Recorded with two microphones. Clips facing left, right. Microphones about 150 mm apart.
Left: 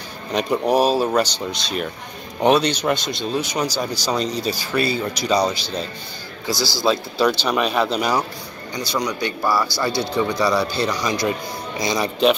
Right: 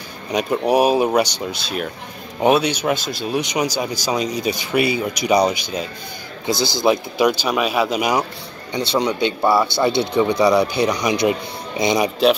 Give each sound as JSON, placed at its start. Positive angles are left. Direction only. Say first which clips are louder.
{"t": 0.3, "sound": "speech", "louder": "right 1 dB", "side_deg": -10}
{"t": 8.7, "sound": "speech", "louder": "right 5 dB", "side_deg": -25}